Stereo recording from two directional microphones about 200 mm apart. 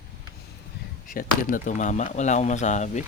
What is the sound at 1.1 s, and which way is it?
Speech, 45° left (ahead or behind).